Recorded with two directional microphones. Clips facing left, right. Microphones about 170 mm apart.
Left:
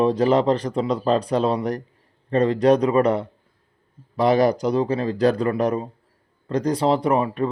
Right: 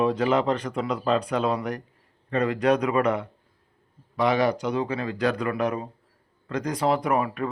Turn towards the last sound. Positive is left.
turn(degrees=30)  # may be behind; listen again after turning